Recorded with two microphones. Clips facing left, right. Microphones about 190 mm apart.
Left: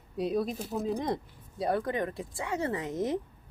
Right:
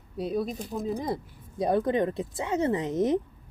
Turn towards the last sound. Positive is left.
turn(degrees=-20)  # may be behind; listen again after turning